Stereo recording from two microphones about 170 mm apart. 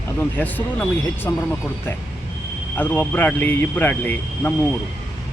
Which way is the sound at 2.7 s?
10° left (ahead or behind).